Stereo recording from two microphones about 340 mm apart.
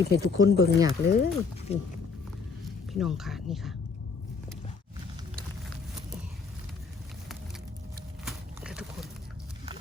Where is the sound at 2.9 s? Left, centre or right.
Centre.